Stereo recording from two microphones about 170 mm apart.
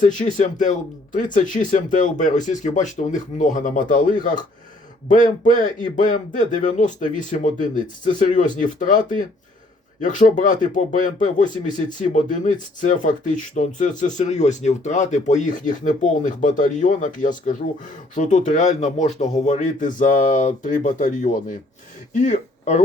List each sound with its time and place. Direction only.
0.0 s speech: 45° left (ahead or behind)